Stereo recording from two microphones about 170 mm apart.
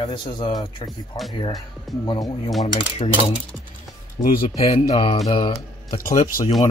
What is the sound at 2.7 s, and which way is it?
Speech, 30° left (ahead or behind).